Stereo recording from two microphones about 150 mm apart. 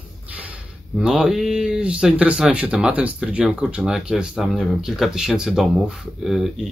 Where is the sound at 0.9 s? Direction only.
5° right (ahead or behind).